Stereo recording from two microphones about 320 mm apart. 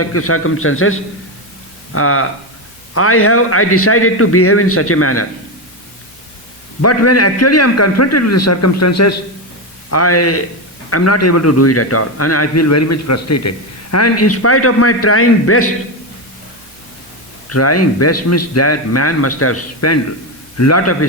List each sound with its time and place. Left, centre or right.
0.0 s a man's voice: left
6.8 s a man's voice: left
17.5 s a man's voice: left